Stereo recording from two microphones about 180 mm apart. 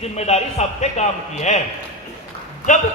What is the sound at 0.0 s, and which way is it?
A man's voice, 35° left (ahead or behind).